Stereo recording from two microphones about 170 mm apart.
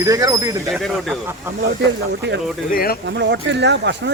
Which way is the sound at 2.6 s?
60° left (ahead or behind).